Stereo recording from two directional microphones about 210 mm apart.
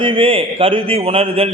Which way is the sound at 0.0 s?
25° right (ahead or behind).